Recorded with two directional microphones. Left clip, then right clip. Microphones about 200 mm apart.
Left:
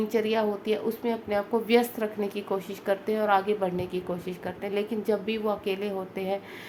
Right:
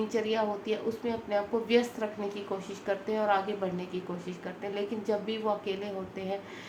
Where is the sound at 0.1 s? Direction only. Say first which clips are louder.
Left 5 dB; 55° left (ahead or behind).